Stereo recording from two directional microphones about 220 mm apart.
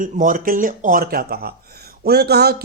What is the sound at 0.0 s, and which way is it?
Mantra, 35° right (ahead or behind).